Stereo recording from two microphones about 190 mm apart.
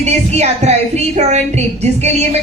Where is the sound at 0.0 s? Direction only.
35° right (ahead or behind).